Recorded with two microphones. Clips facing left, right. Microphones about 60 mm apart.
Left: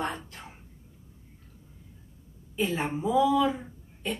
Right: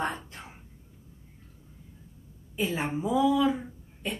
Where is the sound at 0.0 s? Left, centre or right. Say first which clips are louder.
Right 1 dB; right.